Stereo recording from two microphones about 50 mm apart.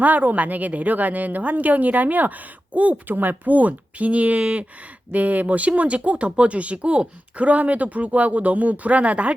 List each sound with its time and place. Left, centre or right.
0.0 s a woman's voice: right